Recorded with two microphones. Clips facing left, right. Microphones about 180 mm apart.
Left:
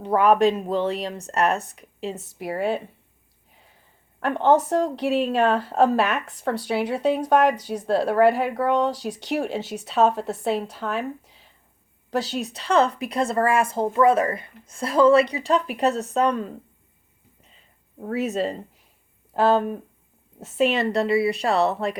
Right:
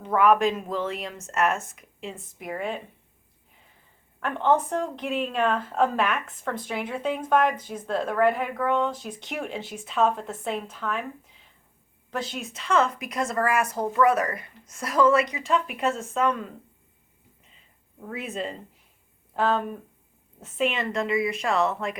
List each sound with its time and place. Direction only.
0.0 s speech: 35° left (ahead or behind)
4.2 s a woman's voice: 35° left (ahead or behind)
18.0 s speech: 40° left (ahead or behind)